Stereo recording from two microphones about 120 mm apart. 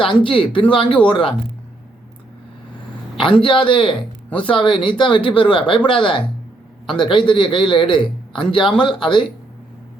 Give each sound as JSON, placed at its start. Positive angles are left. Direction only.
{"t": 0.3, "sound": "speech", "side_deg": 45}
{"t": 3.4, "sound": "a man's voice", "side_deg": 45}